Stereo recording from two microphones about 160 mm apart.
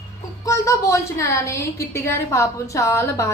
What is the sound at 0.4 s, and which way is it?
A woman's voice, 20° left (ahead or behind).